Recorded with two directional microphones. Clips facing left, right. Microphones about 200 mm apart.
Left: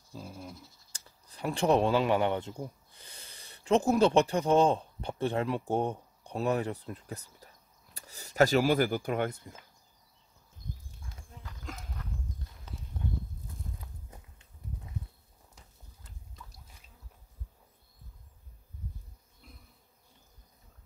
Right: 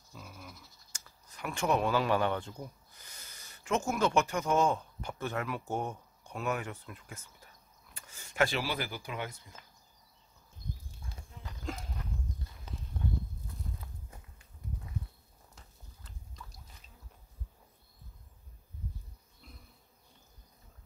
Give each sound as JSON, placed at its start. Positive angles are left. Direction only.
{"t": 0.1, "sound": "speech", "side_deg": 30}
{"t": 11.4, "sound": "horse", "side_deg": -30}